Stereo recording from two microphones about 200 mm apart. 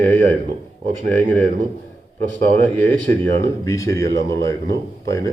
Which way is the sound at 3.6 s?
15° left (ahead or behind).